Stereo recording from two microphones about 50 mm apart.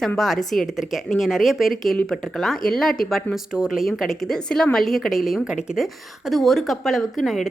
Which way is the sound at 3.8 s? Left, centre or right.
Centre.